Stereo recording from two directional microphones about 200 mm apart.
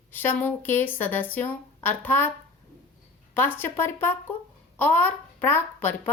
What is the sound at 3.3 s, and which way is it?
A woman's voice, 10° left (ahead or behind).